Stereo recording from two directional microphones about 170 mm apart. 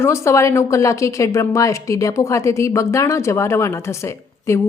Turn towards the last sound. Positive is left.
turn(degrees=15)  # may be behind; listen again after turning